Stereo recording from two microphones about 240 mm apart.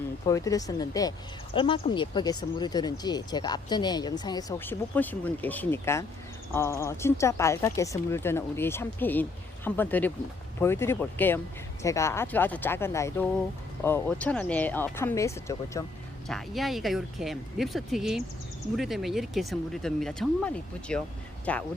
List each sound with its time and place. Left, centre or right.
0.3 s speech: centre
16.3 s speech: centre